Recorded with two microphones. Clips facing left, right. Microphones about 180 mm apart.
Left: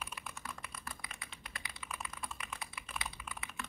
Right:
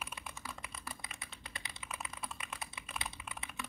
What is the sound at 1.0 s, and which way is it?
Typing, 25° right (ahead or behind).